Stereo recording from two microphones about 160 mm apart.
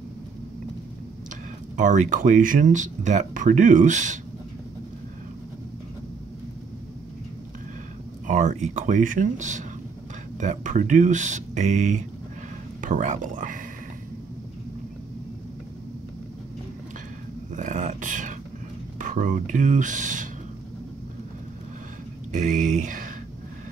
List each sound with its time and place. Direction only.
1.8 s speech: 50° right (ahead or behind)
8.3 s speech: 50° right (ahead or behind)
17.5 s a sound: 50° right (ahead or behind)
18.9 s speech: 55° right (ahead or behind)
22.3 s speech: 50° right (ahead or behind)